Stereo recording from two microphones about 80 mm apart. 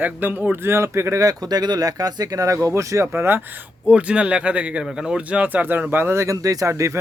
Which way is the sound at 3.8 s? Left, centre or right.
Centre.